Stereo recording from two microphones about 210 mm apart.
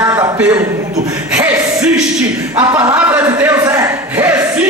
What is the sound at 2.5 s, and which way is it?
A man's voice, 10° right (ahead or behind).